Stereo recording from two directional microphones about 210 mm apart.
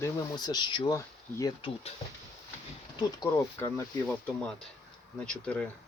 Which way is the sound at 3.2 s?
10° left (ahead or behind).